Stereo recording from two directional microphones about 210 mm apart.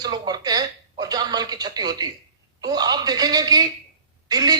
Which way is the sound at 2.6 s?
20° right (ahead or behind).